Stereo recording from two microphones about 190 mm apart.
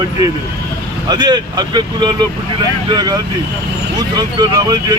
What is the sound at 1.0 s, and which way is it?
Speech, 20° right (ahead or behind).